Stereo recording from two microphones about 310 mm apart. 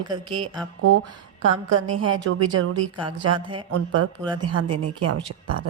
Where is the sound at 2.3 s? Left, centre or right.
Right.